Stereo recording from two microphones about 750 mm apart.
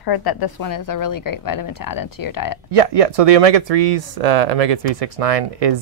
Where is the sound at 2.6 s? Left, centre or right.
Right.